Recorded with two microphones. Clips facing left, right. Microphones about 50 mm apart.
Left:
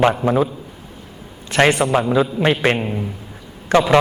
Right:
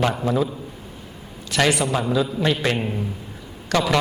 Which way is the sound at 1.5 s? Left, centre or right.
Left.